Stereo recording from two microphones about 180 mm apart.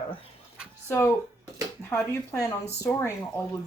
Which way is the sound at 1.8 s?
15° left (ahead or behind).